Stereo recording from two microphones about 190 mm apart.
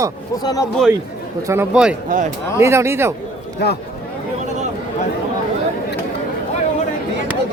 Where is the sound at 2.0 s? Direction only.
45° right (ahead or behind).